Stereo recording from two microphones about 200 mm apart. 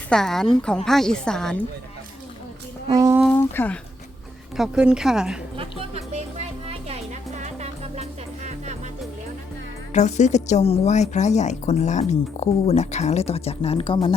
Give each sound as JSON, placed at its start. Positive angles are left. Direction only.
{"t": 0.1, "sound": "a woman's voice", "side_deg": 0}
{"t": 2.8, "sound": "a sound", "side_deg": -15}
{"t": 3.3, "sound": "speech", "side_deg": 10}
{"t": 4.5, "sound": "a woman's voice", "side_deg": -5}
{"t": 5.5, "sound": "music", "side_deg": -30}
{"t": 9.9, "sound": "speech", "side_deg": 35}